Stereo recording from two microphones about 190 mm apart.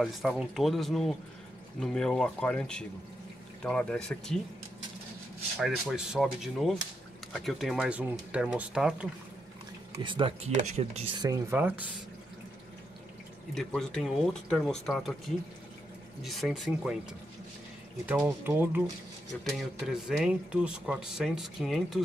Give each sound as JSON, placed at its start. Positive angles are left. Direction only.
{"t": 0.0, "sound": "speech", "side_deg": 0}
{"t": 5.6, "sound": "speech", "side_deg": 0}
{"t": 10.0, "sound": "speech", "side_deg": -25}
{"t": 10.5, "sound": "speech", "side_deg": -35}
{"t": 11.1, "sound": "speech", "side_deg": -15}
{"t": 13.6, "sound": "speech", "side_deg": 0}
{"t": 18.0, "sound": "speech", "side_deg": -10}